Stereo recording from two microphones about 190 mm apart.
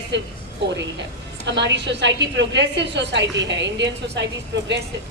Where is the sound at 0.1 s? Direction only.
65° right (ahead or behind).